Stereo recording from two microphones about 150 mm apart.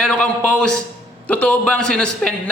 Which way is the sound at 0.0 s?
5° left (ahead or behind).